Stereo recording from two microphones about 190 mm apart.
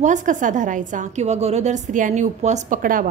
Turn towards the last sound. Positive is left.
turn(degrees=-45)  # may be behind; listen again after turning